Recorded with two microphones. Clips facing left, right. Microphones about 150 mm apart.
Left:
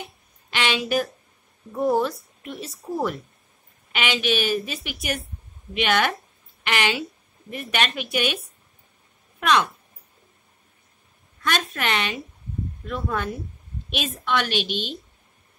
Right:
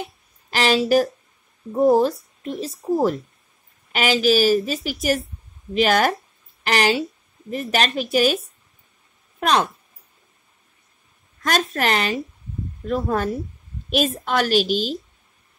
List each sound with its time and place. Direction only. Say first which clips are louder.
0.0 s music: right 6 dB; 40° right (ahead or behind)
1.7 s a woman's voice: right 6 dB; 30° right (ahead or behind)
9.4 s speech: right 1 dB; 35° right (ahead or behind)
11.4 s a woman's voice: right 4 dB; 40° right (ahead or behind)